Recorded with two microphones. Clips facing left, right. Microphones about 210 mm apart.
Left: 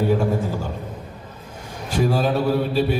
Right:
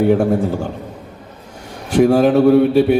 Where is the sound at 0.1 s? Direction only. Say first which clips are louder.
Right 6 dB; 65° right (ahead or behind).